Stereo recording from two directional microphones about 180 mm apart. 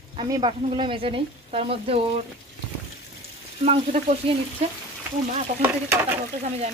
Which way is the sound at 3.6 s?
40° right (ahead or behind).